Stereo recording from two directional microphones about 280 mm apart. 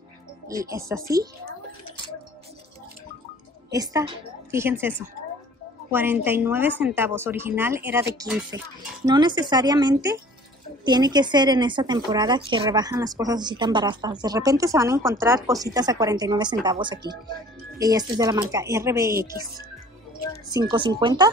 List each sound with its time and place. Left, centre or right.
0.5 s a woman's voice: centre
3.7 s a woman's voice: centre
9.0 s a woman's voice: centre
20.4 s a woman's voice: centre